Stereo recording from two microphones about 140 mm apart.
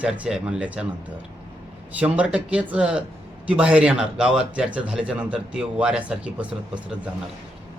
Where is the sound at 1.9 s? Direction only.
10° right (ahead or behind).